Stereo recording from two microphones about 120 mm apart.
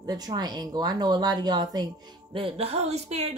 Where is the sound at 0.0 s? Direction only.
35° right (ahead or behind).